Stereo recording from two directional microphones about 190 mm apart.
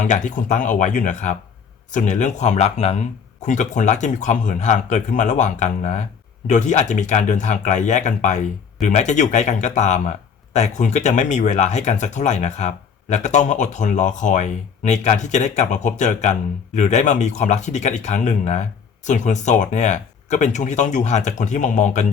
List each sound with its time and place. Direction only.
0.0 s speech: 40° left (ahead or behind)